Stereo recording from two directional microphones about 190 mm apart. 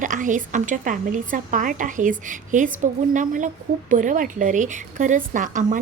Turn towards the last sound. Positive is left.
turn(degrees=-45)  # may be behind; listen again after turning